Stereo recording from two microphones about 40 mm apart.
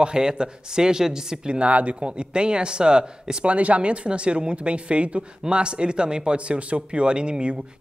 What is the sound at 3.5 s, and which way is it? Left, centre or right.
Speech, right.